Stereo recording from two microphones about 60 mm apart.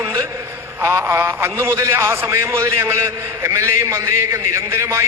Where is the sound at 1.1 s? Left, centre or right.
Right.